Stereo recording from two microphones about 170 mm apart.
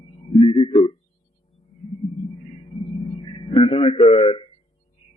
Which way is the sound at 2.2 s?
30° left (ahead or behind).